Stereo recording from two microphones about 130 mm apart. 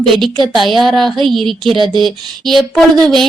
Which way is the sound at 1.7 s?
40° right (ahead or behind).